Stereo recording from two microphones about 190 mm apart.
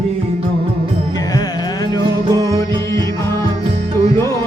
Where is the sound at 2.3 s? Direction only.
15° left (ahead or behind).